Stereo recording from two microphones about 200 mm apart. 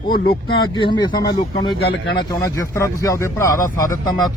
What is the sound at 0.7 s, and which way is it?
Speech, 25° left (ahead or behind).